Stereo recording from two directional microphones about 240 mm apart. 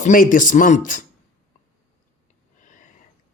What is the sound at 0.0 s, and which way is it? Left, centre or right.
A woman's voice, left.